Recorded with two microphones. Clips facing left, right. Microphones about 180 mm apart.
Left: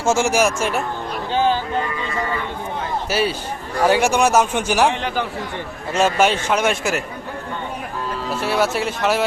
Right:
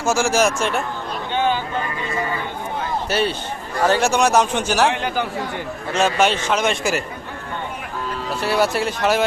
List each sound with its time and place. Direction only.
0.0 s speech: 25° left (ahead or behind)
0.3 s speech: 5° left (ahead or behind)
1.3 s vehicle: 35° left (ahead or behind)
3.1 s a man's voice: 5° left (ahead or behind)
4.9 s speech: 5° right (ahead or behind)
5.9 s a man's voice: 10° left (ahead or behind)
8.3 s speech: centre (ahead or behind)